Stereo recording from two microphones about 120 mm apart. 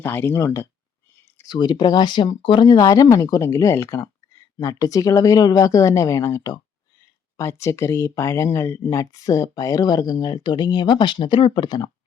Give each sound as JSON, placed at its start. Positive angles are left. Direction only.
{"t": 0.0, "sound": "speech", "side_deg": 20}
{"t": 1.5, "sound": "speech", "side_deg": 35}